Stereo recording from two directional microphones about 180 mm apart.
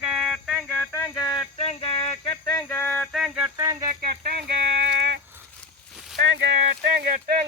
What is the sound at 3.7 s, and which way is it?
Speech, 20° right (ahead or behind).